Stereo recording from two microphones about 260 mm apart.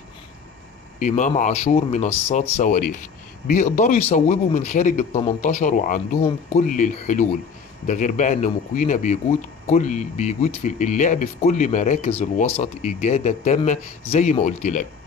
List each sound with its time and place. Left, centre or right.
0.9 s a man's voice: left